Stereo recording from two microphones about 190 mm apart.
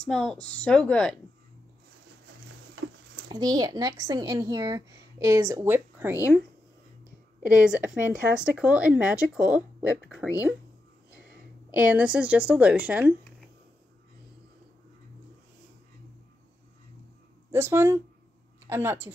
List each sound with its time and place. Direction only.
0.0 s speech: 5° left (ahead or behind)
3.3 s speech: 20° right (ahead or behind)
7.6 s speech: 5° right (ahead or behind)
11.7 s a woman's voice: 10° right (ahead or behind)
17.5 s a woman's voice: 10° right (ahead or behind)